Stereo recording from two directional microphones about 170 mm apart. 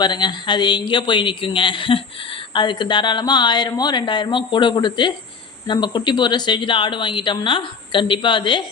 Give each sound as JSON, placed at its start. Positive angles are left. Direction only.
{"t": 0.0, "sound": "speech", "side_deg": 25}